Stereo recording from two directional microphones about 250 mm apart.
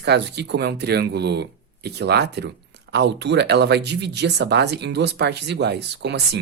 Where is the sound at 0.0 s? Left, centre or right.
Right.